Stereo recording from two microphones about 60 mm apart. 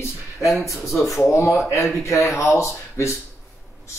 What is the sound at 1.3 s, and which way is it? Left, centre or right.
Speech, left.